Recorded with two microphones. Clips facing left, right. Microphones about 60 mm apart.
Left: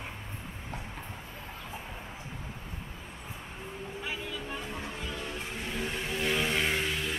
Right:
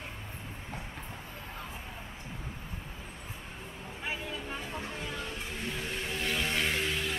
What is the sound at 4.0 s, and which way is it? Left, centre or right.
Vehicle, right.